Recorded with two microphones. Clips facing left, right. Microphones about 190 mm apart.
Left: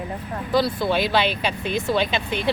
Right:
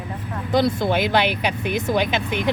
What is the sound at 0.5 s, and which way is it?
A woman's voice, 20° right (ahead or behind).